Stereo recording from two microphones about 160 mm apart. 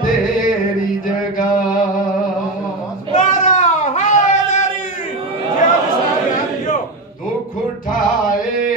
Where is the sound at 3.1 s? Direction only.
45° left (ahead or behind).